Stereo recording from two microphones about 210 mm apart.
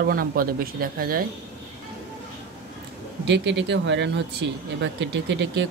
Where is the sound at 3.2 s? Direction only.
55° right (ahead or behind).